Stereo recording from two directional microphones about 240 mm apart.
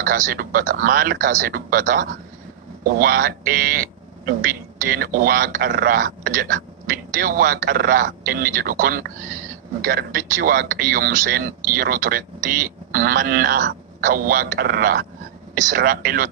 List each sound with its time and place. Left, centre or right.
0.0 s speech: right
4.8 s speech: right